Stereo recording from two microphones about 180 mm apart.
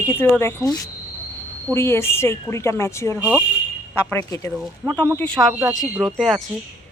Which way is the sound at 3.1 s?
5° right (ahead or behind).